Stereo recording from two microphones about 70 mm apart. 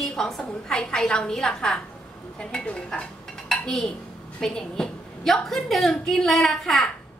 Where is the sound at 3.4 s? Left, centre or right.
Centre.